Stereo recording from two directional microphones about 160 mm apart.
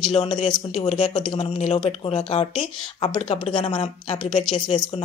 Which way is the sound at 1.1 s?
30° left (ahead or behind).